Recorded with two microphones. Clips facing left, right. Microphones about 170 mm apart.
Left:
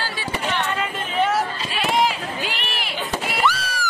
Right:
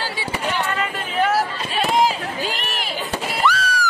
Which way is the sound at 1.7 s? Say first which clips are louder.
Right 2 dB; 40° right (ahead or behind).